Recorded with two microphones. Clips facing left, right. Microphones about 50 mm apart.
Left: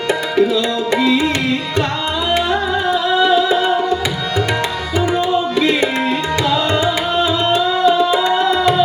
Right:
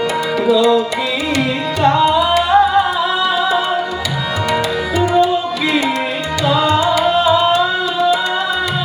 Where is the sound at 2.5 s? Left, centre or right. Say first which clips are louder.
Right 5 dB; centre.